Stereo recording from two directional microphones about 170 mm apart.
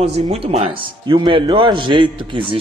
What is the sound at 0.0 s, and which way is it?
Speech, 35° right (ahead or behind).